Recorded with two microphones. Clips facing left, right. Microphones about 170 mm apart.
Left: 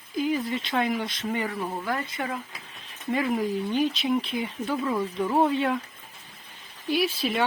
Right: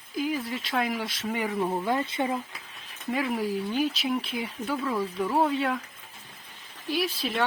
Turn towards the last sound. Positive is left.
turn(degrees=0)  # may be behind; listen again after turning